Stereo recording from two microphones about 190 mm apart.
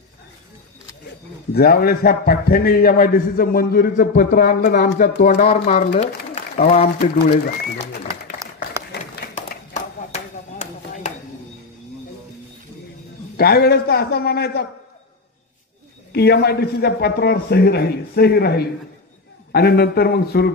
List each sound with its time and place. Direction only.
1.5 s a man's voice: 55° left (ahead or behind); by 7.3 s 35° left (ahead or behind)
8.4 s applause: 15° right (ahead or behind)
9.3 s clapping: 40° left (ahead or behind)
13.4 s a man's voice: 55° left (ahead or behind)
16.1 s a man's voice: 60° left (ahead or behind)